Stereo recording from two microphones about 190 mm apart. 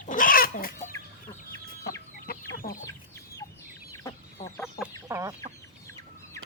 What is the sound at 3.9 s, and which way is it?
Chicken, 15° left (ahead or behind).